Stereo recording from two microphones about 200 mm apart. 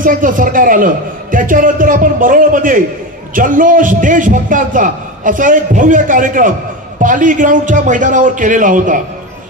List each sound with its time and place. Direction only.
0.0 s a man's voice: 45° right (ahead or behind)